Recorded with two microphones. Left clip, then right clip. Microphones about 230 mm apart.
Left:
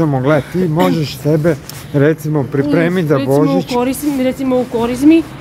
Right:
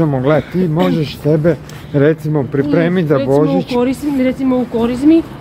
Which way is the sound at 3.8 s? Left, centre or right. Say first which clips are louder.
Even; left.